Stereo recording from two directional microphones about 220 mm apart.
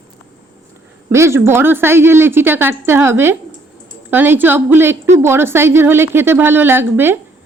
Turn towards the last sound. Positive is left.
turn(degrees=-10)  # may be behind; listen again after turning